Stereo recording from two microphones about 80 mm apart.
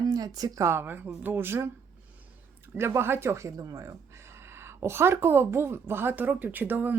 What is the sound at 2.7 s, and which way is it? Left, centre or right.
Speech, right.